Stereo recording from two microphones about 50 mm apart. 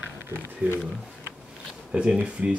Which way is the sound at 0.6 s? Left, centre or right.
Right.